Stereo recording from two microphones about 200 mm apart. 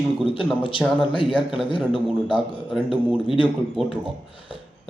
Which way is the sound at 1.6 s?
25° left (ahead or behind).